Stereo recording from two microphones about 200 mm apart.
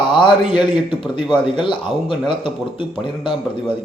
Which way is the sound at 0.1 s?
25° left (ahead or behind).